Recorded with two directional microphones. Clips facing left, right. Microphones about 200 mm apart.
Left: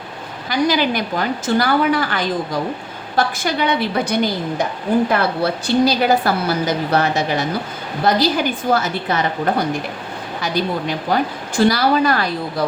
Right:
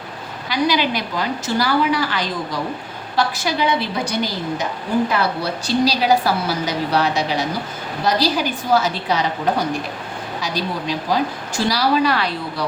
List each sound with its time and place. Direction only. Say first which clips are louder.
0.4 s a woman's voice: left 2 dB; 50° left (ahead or behind)